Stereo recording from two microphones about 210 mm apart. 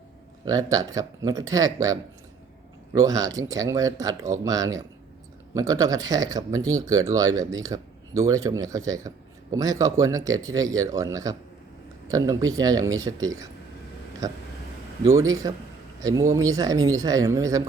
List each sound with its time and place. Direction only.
0.4 s speech: 15° right (ahead or behind)